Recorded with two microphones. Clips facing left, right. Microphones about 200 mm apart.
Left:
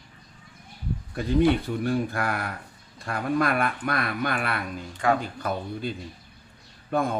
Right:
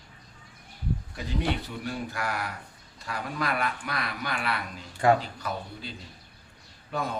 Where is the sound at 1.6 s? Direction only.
50° left (ahead or behind).